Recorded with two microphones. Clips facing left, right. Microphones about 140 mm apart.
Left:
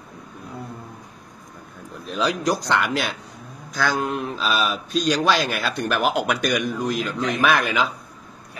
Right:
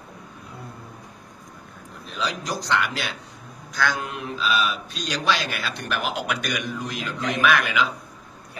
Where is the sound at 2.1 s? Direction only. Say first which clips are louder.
Left 6 dB; 45° left (ahead or behind).